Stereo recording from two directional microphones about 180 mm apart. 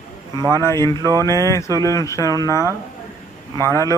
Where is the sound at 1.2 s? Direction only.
15° left (ahead or behind).